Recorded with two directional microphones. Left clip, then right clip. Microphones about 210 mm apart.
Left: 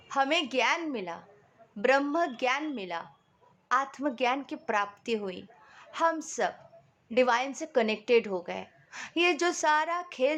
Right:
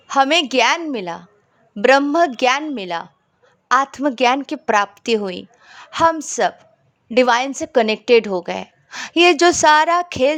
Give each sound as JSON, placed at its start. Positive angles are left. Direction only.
{"t": 0.1, "sound": "a woman's voice", "side_deg": -40}